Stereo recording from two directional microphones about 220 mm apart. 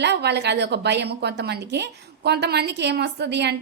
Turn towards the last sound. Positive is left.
turn(degrees=-50)  # may be behind; listen again after turning